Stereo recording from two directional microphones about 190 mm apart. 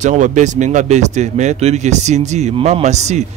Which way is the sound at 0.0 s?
40° right (ahead or behind).